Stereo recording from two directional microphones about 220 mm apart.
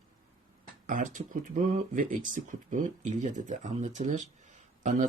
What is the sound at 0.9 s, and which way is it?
Speech, 35° right (ahead or behind).